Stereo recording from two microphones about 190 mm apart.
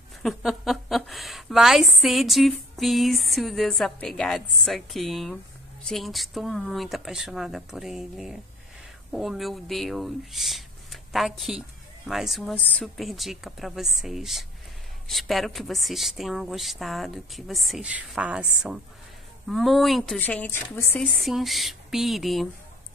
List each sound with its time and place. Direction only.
0.2 s a woman's voice: centre (ahead or behind)